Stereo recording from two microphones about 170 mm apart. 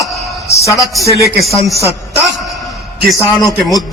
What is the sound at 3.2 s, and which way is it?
Speech, 20° left (ahead or behind).